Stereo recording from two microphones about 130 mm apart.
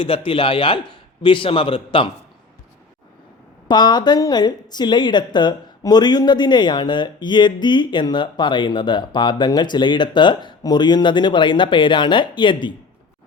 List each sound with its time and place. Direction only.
0.0 s a man's voice: 40° left (ahead or behind)
3.7 s speech: 35° left (ahead or behind)